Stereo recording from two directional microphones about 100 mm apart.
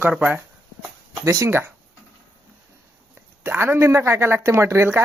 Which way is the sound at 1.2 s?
30° right (ahead or behind).